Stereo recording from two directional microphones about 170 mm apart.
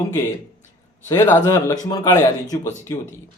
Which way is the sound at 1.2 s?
20° left (ahead or behind).